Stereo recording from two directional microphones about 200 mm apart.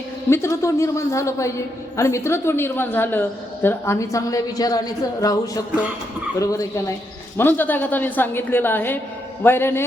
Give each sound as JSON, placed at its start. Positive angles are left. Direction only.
{"t": 0.3, "sound": "a woman's voice", "side_deg": 15}